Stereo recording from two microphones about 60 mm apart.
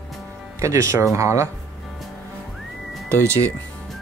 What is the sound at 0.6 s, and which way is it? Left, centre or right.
Speech, right.